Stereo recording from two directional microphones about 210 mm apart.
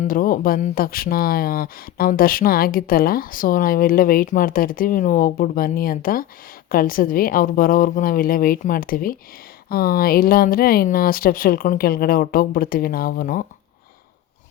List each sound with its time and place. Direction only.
0.0 s speech: 40° left (ahead or behind)